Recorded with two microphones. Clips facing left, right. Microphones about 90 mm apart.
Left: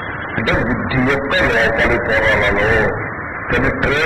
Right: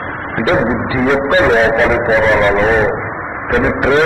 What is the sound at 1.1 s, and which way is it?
Music, 25° right (ahead or behind).